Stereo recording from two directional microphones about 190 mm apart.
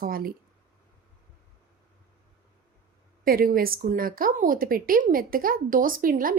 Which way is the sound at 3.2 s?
50° right (ahead or behind).